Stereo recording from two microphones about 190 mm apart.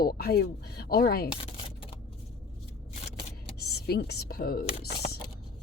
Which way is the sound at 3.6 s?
55° left (ahead or behind).